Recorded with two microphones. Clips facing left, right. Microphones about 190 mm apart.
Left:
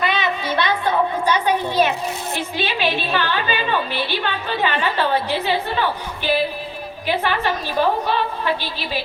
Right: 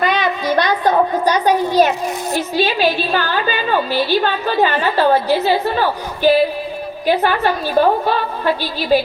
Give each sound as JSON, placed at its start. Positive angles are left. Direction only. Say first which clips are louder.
{"t": 0.0, "sound": "a sound", "louder": "right 4 dB", "side_deg": -45}
{"t": 2.3, "sound": "a woman's voice", "louder": "right 10 dB", "side_deg": -35}
{"t": 7.1, "sound": "a woman's voice", "louder": "right 5 dB", "side_deg": -40}